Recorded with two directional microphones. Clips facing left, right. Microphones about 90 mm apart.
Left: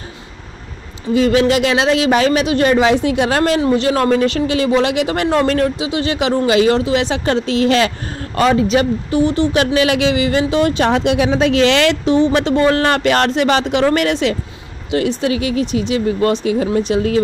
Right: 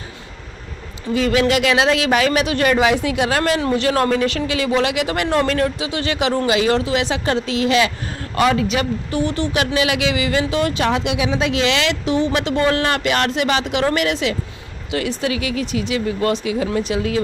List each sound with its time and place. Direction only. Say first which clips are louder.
1.1 s speech: left 4 dB; 30° left (ahead or behind)
4.1 s speech: left 4 dB; 35° left (ahead or behind)
14.9 s speech: left 5 dB; 25° left (ahead or behind)